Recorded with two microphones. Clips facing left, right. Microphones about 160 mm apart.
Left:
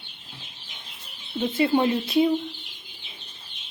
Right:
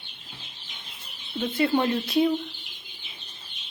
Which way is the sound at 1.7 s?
10° left (ahead or behind).